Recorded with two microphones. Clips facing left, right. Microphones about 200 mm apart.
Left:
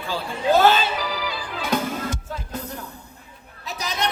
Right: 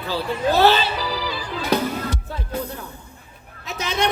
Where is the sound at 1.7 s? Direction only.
50° left (ahead or behind).